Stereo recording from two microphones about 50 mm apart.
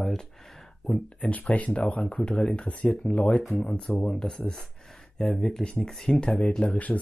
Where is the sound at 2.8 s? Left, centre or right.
Left.